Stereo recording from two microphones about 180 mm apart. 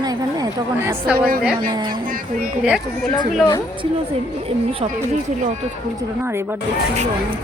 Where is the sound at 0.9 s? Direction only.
10° right (ahead or behind).